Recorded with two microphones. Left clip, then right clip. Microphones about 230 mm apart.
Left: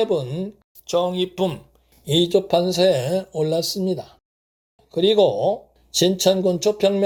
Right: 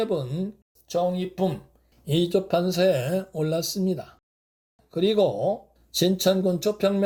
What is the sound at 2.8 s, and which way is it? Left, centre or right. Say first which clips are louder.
Speech: left 4 dB; centre.